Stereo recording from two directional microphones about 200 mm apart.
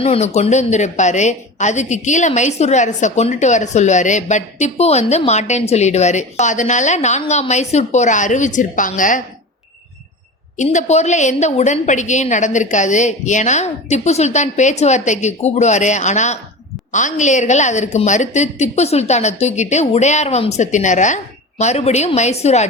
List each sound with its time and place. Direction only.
0.0 s a woman's voice: 30° left (ahead or behind)
10.6 s a woman's voice: 35° left (ahead or behind)